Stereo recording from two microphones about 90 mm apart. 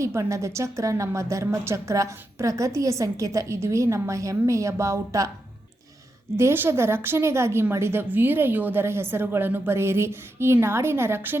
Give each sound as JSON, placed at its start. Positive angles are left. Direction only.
{"t": 0.0, "sound": "a woman's voice", "side_deg": -35}
{"t": 6.3, "sound": "speech", "side_deg": -25}